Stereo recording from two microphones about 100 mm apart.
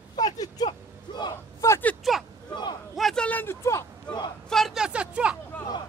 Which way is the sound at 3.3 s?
20° left (ahead or behind).